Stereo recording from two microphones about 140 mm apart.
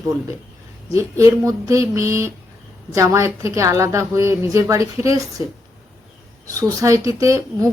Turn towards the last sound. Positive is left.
turn(degrees=-20)  # may be behind; listen again after turning